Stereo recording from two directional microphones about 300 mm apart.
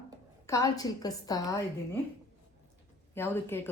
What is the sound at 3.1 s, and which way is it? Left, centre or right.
Speech, centre.